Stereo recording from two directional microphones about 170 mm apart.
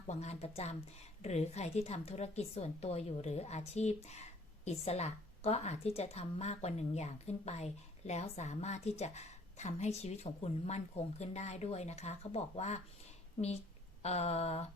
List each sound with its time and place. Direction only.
0.1 s a woman's voice: 40° left (ahead or behind)
14.0 s a woman's voice: 40° left (ahead or behind)